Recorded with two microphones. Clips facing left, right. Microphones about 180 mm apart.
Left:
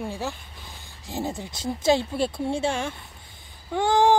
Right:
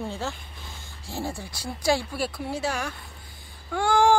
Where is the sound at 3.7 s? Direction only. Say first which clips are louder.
Left 1 dB; 20° left (ahead or behind).